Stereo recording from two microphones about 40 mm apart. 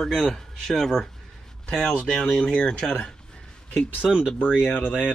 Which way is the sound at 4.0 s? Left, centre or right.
Centre.